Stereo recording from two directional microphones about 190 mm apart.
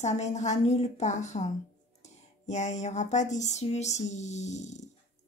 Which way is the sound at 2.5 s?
40° left (ahead or behind).